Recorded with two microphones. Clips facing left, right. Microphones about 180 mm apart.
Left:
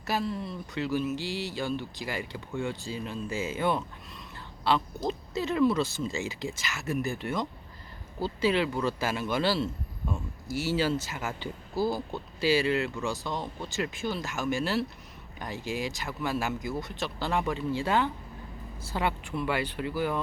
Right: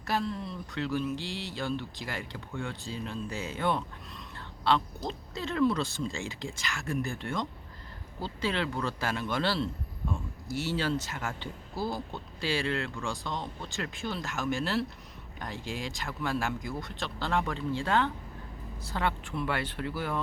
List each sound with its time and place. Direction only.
0.0 s speech: 5° left (ahead or behind)